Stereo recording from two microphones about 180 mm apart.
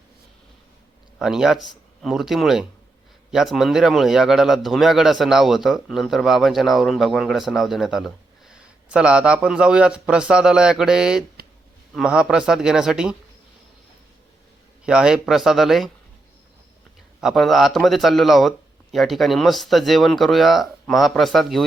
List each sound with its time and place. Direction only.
1.2 s a man's voice: 5° right (ahead or behind)
11.4 s a sound: 55° right (ahead or behind)
11.9 s a man's voice: 5° right (ahead or behind)
14.8 s a man's voice: 5° right (ahead or behind)
17.2 s a man's voice: centre (ahead or behind)